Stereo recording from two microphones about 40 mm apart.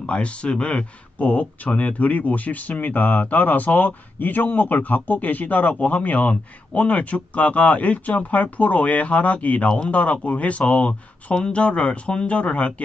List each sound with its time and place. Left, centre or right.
0.0 s speech: left